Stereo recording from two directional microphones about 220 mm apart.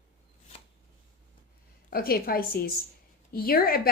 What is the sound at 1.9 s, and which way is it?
Speech, 45° left (ahead or behind).